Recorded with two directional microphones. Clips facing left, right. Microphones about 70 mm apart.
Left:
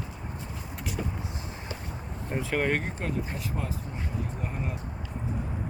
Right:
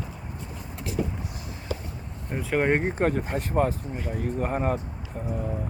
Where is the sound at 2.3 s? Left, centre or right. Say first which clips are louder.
Even; centre.